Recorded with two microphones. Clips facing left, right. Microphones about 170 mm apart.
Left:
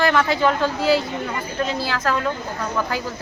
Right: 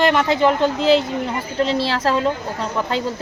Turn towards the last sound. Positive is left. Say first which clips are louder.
# right 2 dB
turn(degrees=-25)  # may be behind; listen again after turning